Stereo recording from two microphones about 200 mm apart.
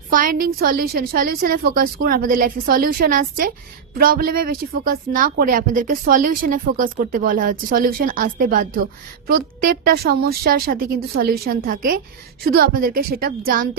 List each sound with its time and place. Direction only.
0.1 s a woman's voice: 45° right (ahead or behind)